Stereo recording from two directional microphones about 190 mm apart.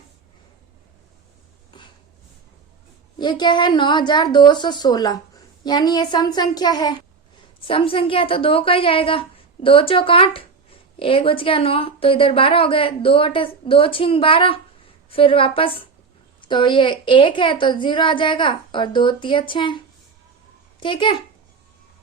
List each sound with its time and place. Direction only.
3.2 s a woman's voice: 25° left (ahead or behind)